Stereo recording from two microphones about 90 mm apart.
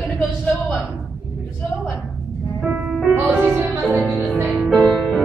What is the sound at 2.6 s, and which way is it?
Music, 20° right (ahead or behind).